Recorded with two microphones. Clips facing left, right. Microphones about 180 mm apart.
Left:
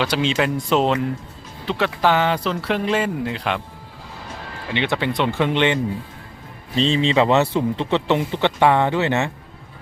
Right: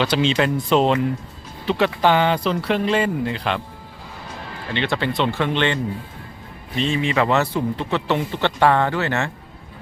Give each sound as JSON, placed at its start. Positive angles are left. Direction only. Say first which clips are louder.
{"t": 0.0, "sound": "speech", "louder": "right 1 dB", "side_deg": 5}
{"t": 4.7, "sound": "speech", "louder": "left 1 dB", "side_deg": 15}
{"t": 6.7, "sound": "speech", "louder": "left 3 dB", "side_deg": 30}